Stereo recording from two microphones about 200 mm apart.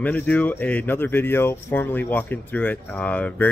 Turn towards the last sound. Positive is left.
turn(degrees=5)  # may be behind; listen again after turning